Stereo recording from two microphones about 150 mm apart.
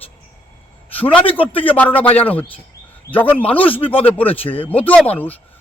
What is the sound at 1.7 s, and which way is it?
A man's voice, 10° left (ahead or behind).